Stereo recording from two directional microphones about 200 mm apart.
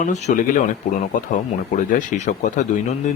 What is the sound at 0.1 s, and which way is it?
Speech, 35° left (ahead or behind).